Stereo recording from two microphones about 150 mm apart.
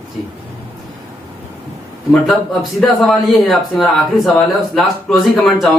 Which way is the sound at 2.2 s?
Centre (ahead or behind).